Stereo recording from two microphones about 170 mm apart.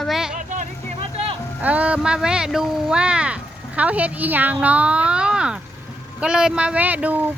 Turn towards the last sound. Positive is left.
turn(degrees=-10)  # may be behind; listen again after turning